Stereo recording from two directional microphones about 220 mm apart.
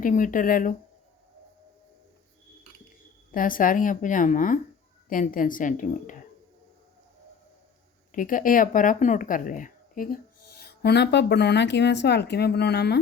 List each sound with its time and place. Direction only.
0.0 s speech: 35° left (ahead or behind)
3.3 s speech: 40° left (ahead or behind)
8.1 s speech: 40° left (ahead or behind)